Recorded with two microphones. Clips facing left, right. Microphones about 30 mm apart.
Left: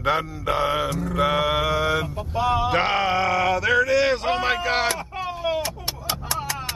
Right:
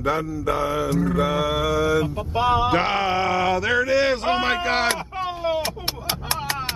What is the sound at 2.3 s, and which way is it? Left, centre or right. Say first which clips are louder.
Speech: right 2 dB; right.